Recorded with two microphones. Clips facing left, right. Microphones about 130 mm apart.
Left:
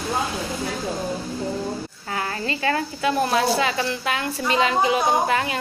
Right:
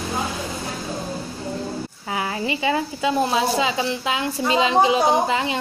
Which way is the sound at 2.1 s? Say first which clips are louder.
Right 2 dB; 10° right (ahead or behind).